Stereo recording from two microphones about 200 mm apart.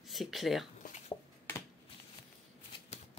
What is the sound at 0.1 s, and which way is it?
Speech, centre (ahead or behind).